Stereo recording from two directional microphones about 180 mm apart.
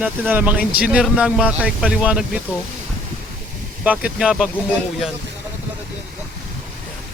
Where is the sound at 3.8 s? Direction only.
5° right (ahead or behind).